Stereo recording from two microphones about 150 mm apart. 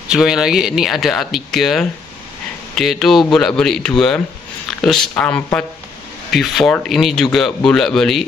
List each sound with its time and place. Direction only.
0.1 s speech: 5° right (ahead or behind)